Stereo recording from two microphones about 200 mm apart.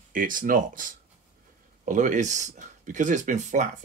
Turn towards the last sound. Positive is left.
turn(degrees=-40)  # may be behind; listen again after turning